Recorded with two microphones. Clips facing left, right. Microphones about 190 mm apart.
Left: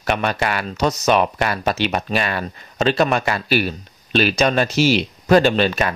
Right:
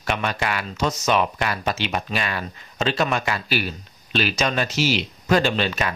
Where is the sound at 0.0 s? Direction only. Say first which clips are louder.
Left 4 dB; 50° left (ahead or behind).